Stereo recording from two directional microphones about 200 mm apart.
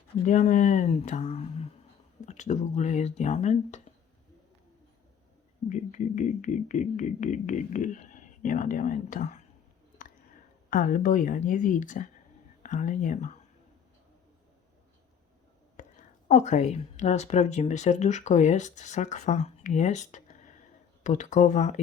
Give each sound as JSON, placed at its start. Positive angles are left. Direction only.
{"t": 0.3, "sound": "speech", "side_deg": 40}
{"t": 5.6, "sound": "speech", "side_deg": 40}
{"t": 10.7, "sound": "speech", "side_deg": 45}
{"t": 15.8, "sound": "a woman's voice", "side_deg": 40}